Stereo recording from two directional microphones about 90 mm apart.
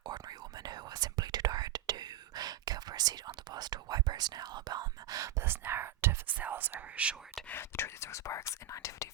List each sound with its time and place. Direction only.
0.0 s whispering: 50° right (ahead or behind)
5.4 s whispering: 25° right (ahead or behind)
7.5 s whispering: 25° left (ahead or behind)